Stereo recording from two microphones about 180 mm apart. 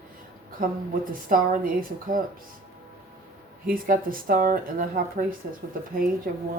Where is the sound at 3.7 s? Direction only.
50° right (ahead or behind).